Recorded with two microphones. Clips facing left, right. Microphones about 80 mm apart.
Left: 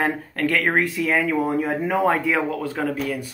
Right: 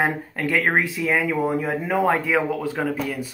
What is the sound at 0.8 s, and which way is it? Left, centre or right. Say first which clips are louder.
Speech: left 1 dB; centre.